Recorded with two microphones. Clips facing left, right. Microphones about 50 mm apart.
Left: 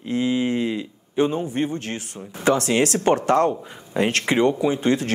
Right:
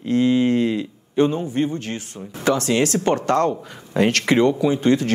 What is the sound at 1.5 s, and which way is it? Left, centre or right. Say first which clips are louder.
Speech: right 2 dB; left.